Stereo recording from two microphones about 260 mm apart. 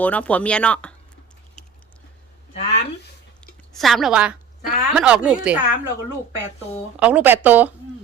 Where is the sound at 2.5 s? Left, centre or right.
Left.